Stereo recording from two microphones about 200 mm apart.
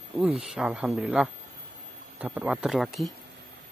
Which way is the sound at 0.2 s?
5° right (ahead or behind).